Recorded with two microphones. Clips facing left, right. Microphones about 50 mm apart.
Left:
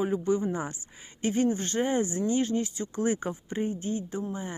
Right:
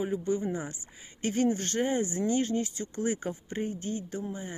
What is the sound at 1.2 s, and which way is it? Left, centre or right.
Speech, left.